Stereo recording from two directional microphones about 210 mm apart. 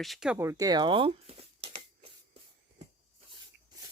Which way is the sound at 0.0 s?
Centre (ahead or behind).